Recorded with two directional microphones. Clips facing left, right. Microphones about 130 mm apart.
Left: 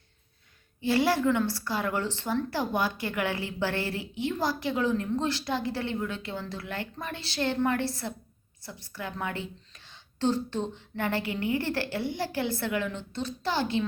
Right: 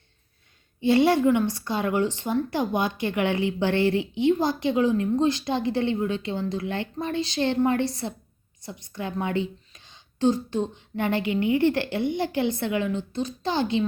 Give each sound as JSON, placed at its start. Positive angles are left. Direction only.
{"t": 0.8, "sound": "a woman's voice", "side_deg": -20}